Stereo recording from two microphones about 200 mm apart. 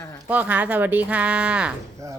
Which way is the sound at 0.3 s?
10° right (ahead or behind).